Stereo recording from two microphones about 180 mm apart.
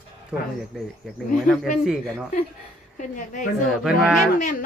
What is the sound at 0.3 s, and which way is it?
Speech, 5° right (ahead or behind).